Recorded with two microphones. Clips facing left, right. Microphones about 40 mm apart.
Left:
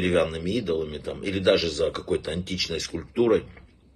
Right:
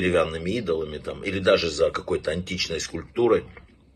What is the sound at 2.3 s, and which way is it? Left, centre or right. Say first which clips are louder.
Speech: right 2 dB; right.